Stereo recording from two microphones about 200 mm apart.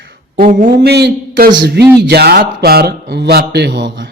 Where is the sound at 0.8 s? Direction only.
55° right (ahead or behind).